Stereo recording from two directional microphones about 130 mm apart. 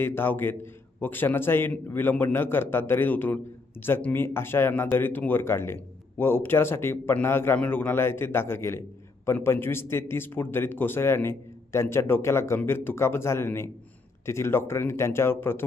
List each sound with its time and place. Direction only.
0.0 s a man's voice: 15° left (ahead or behind)